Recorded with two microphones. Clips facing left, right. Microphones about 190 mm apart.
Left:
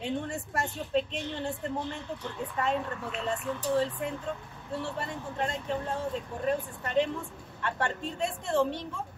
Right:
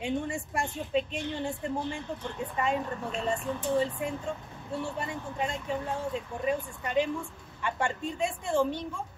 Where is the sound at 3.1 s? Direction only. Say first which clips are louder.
Right 2 dB; 40° right (ahead or behind).